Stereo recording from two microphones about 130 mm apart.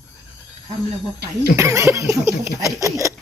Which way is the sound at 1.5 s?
20° right (ahead or behind).